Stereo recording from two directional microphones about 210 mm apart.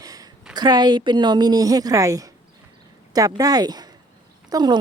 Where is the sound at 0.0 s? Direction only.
15° right (ahead or behind).